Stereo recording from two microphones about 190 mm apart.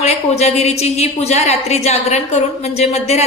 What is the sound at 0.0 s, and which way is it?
A woman's voice, 35° left (ahead or behind).